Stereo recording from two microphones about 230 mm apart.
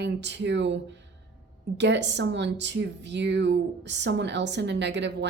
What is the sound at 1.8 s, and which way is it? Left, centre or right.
Speech, right.